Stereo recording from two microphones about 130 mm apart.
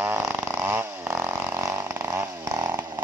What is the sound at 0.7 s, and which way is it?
Chainsaw, 15° right (ahead or behind).